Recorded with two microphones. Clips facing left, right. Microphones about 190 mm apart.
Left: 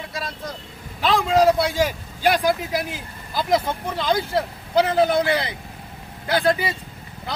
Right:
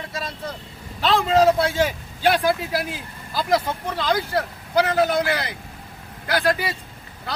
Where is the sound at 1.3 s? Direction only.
10° left (ahead or behind).